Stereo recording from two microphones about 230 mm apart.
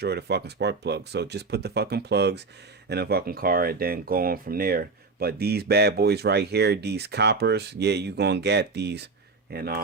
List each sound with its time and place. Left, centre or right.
0.0 s speech: right